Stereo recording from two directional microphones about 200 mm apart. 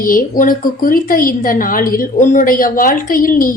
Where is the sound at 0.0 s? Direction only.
45° left (ahead or behind).